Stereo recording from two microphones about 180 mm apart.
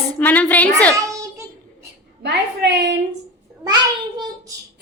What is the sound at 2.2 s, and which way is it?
Speech, 70° right (ahead or behind).